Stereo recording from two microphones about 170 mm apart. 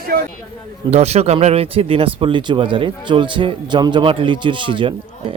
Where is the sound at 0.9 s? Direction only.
40° right (ahead or behind).